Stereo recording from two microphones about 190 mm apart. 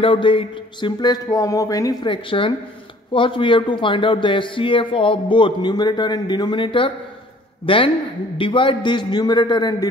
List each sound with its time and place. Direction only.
0.0 s a man's voice: 25° left (ahead or behind)